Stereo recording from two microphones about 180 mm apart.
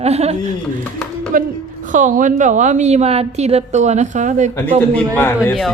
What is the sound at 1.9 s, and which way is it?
A woman's voice, 45° right (ahead or behind).